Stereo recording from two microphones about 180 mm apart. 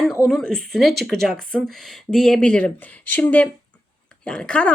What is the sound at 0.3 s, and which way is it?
Speech, centre (ahead or behind).